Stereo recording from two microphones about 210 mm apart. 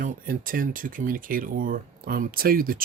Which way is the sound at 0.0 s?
40° right (ahead or behind).